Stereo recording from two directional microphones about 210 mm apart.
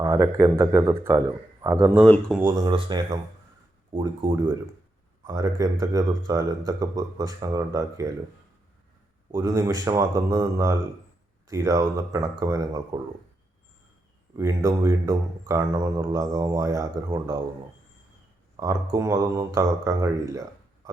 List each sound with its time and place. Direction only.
0.0 s a man's voice: 15° right (ahead or behind)
2.0 s speech: 10° left (ahead or behind)
2.4 s a man's voice: 15° right (ahead or behind)
9.3 s a man's voice: 15° right (ahead or behind)
14.3 s a man's voice: 15° right (ahead or behind)
18.5 s a man's voice: 15° right (ahead or behind)